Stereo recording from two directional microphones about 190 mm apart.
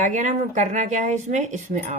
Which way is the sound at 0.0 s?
40° right (ahead or behind).